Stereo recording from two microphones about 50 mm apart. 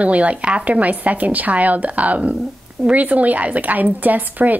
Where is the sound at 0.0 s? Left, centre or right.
Right.